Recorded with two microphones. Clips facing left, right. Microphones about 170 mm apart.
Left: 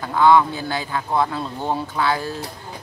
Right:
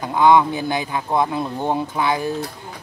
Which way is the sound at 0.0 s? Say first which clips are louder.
Right 1 dB; 15° right (ahead or behind).